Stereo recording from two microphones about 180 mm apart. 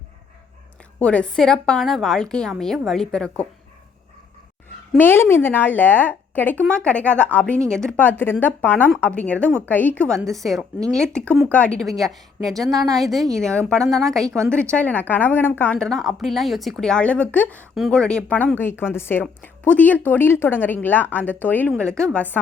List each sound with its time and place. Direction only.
0.9 s a woman's voice: 5° left (ahead or behind)
4.9 s a woman's voice: 10° left (ahead or behind)
14.3 s speech: 15° right (ahead or behind)
14.5 s a woman's voice: 5° left (ahead or behind)